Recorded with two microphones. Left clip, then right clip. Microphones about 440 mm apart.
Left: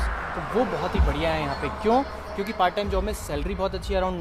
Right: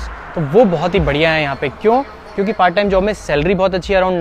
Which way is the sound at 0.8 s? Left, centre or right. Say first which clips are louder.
Right 12 dB; right.